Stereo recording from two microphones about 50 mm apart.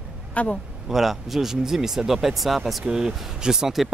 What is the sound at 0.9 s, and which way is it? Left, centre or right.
Speech, centre.